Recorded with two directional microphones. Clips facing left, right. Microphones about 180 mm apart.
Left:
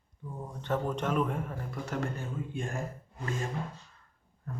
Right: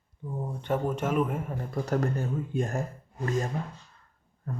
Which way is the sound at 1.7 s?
40° right (ahead or behind).